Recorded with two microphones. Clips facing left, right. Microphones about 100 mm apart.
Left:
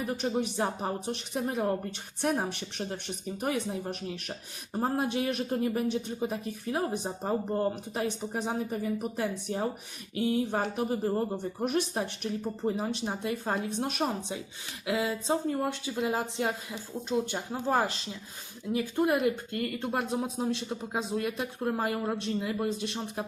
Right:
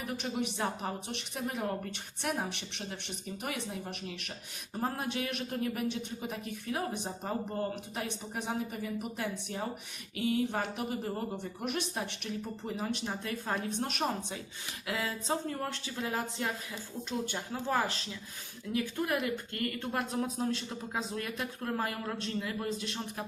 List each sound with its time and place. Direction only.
0.1 s speech: 35° left (ahead or behind)
14.8 s speech: 20° left (ahead or behind)
21.2 s speech: 20° left (ahead or behind)